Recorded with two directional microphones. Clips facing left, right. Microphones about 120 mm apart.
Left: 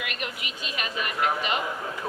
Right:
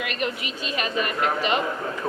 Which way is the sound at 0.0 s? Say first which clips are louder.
Right 6 dB; 35° right (ahead or behind).